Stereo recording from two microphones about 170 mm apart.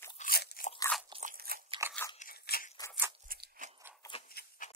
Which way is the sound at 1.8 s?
15° right (ahead or behind).